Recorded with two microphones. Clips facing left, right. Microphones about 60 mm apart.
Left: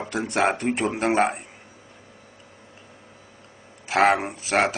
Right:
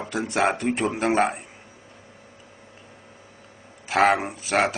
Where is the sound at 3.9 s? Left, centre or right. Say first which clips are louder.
Even; centre.